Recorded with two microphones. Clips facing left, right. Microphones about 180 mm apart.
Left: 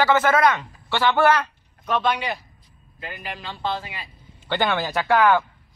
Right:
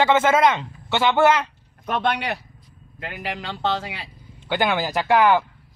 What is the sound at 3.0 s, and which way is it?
Speech, 75° right (ahead or behind).